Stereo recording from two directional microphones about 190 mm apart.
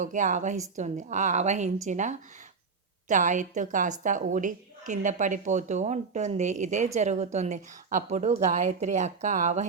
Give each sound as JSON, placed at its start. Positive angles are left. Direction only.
{"t": 0.0, "sound": "a woman's voice", "side_deg": -40}